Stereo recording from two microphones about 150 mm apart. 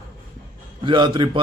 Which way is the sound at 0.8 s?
35° right (ahead or behind).